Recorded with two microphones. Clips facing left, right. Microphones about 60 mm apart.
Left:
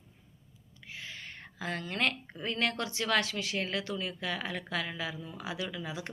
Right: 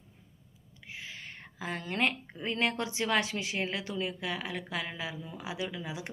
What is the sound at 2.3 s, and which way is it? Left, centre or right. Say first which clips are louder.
Speech: right 1 dB; centre.